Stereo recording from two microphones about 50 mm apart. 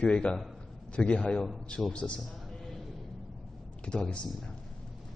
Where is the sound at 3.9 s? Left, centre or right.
Left.